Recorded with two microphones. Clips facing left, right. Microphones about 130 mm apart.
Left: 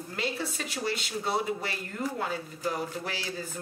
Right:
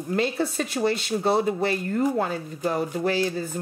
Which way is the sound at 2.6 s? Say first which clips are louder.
Right 9 dB; 45° right (ahead or behind).